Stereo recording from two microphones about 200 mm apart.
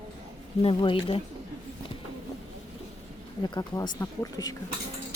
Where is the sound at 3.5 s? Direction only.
20° left (ahead or behind).